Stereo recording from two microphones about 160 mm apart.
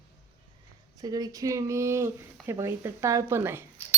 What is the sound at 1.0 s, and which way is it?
A woman's voice, 25° right (ahead or behind).